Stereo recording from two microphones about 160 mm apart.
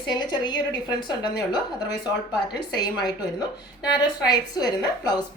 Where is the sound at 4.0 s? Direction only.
25° left (ahead or behind).